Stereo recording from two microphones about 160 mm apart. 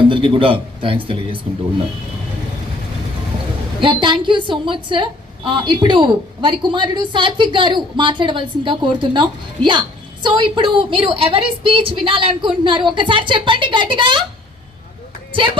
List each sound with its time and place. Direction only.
0.1 s a woman's voice: 35° right (ahead or behind)
3.8 s a woman's voice: 30° right (ahead or behind)